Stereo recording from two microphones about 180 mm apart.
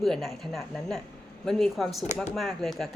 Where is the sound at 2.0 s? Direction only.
40° left (ahead or behind).